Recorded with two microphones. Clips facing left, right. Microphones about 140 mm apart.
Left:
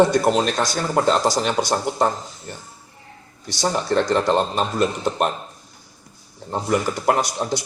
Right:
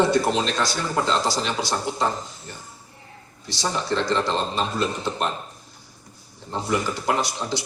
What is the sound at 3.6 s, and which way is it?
A man's voice, 50° left (ahead or behind).